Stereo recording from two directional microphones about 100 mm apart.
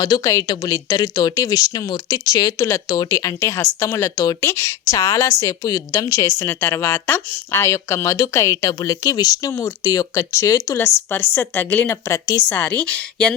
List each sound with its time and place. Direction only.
0.0 s a woman's voice: 40° left (ahead or behind)
10.8 s a woman's voice: 20° left (ahead or behind)
12.0 s a woman's voice: 35° left (ahead or behind)
12.5 s a woman's voice: 15° left (ahead or behind)